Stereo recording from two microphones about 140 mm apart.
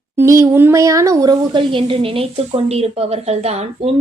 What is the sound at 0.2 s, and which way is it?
A woman's voice, 20° right (ahead or behind).